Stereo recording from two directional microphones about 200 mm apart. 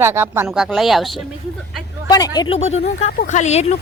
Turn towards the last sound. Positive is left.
turn(degrees=35)  # may be behind; listen again after turning